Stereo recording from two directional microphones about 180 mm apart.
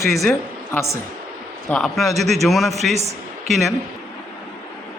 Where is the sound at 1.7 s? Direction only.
Centre (ahead or behind).